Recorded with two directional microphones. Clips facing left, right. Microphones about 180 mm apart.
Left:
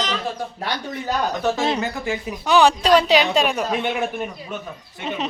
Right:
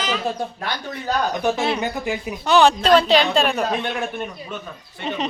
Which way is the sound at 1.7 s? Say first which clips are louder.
Right 1 dB; 20° right (ahead or behind).